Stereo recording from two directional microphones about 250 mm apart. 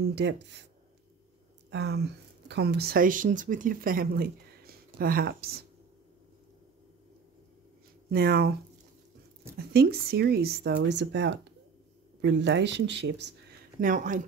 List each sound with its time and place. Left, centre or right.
0.0 s speech: right
1.7 s speech: right
8.1 s speech: right
9.6 s speech: right
13.7 s speech: right